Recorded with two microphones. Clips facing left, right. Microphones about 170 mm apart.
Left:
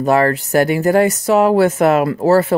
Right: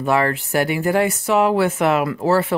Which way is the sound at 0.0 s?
40° left (ahead or behind).